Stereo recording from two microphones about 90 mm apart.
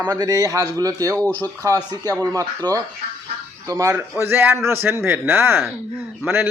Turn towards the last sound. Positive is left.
turn(degrees=-25)  # may be behind; listen again after turning